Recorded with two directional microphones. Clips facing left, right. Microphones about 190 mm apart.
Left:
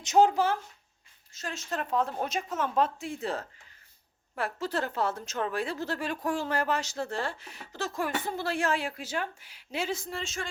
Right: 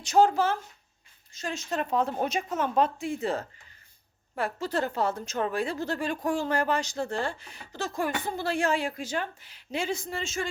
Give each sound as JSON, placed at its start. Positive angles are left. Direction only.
{"t": 0.0, "sound": "speech", "side_deg": 20}
{"t": 1.3, "sound": "a woman's voice", "side_deg": 0}